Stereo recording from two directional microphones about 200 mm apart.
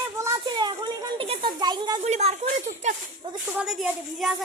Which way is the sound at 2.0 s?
35° right (ahead or behind).